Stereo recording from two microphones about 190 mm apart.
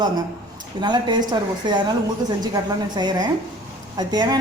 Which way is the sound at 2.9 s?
20° right (ahead or behind).